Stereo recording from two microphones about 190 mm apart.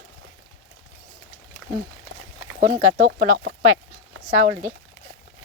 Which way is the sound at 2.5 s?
40° right (ahead or behind).